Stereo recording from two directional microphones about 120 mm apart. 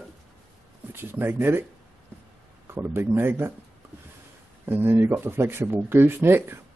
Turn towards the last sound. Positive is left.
turn(degrees=-20)  # may be behind; listen again after turning